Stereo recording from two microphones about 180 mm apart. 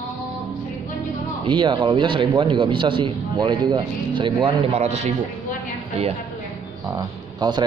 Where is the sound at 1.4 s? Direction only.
25° right (ahead or behind).